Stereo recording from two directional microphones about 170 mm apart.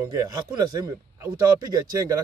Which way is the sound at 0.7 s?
25° right (ahead or behind).